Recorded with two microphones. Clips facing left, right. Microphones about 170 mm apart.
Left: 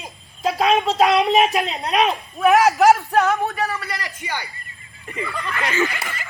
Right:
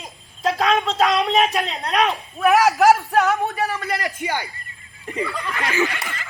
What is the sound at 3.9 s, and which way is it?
Speech, 50° right (ahead or behind).